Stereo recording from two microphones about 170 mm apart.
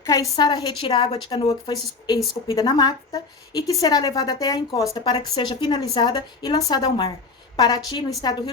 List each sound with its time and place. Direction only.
0.0 s a woman's voice: 20° left (ahead or behind)